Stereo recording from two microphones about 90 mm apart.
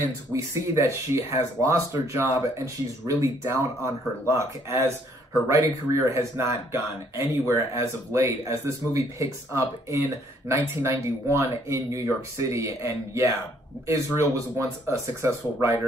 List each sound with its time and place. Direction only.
0.3 s speech: 35° right (ahead or behind)